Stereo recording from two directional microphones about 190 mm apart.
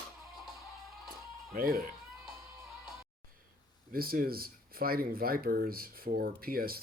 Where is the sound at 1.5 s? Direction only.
50° right (ahead or behind).